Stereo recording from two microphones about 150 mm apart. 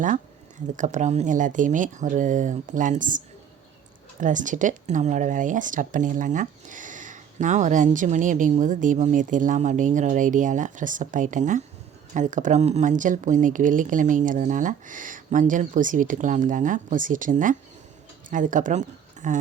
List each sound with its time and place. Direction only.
0.8 s speech: 55° right (ahead or behind)